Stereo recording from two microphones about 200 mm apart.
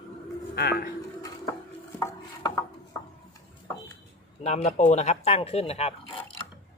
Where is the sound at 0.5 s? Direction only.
50° left (ahead or behind).